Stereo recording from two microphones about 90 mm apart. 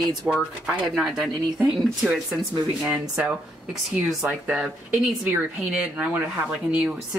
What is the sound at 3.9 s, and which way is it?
Speech, 5° right (ahead or behind).